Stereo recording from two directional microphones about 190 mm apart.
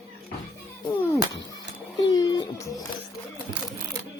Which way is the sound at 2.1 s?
20° left (ahead or behind).